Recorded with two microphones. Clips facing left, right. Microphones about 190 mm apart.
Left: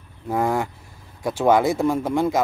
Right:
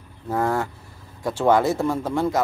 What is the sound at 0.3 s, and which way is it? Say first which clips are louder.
Speech: left 1 dB; 10° left (ahead or behind).